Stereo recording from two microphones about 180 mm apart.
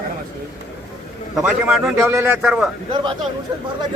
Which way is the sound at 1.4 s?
5° right (ahead or behind).